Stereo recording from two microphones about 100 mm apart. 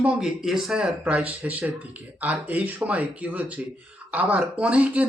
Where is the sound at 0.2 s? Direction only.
5° right (ahead or behind).